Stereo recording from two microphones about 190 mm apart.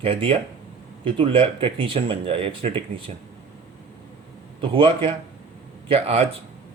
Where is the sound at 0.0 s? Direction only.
30° right (ahead or behind).